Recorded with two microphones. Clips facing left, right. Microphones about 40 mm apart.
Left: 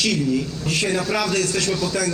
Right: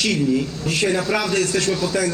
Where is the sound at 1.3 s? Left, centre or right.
Right.